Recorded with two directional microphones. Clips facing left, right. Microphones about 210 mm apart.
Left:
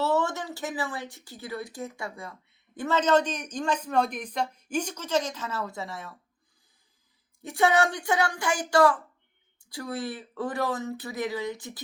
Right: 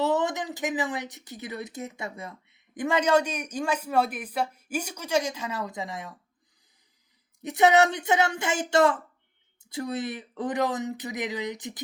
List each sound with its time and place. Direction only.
0.0 s speech: 15° right (ahead or behind)
7.4 s speech: 20° right (ahead or behind)